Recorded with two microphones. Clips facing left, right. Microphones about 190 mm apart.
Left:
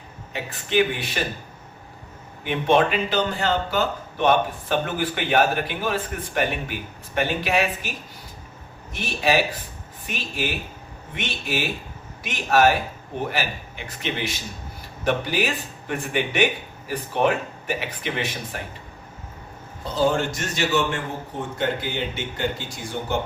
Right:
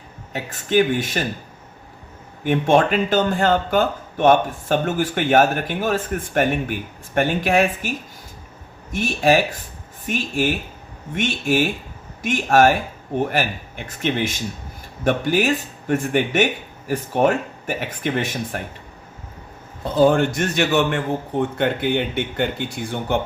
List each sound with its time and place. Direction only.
0.3 s speech: 45° right (ahead or behind)
2.4 s speech: 45° right (ahead or behind)
19.8 s a man's voice: 55° right (ahead or behind)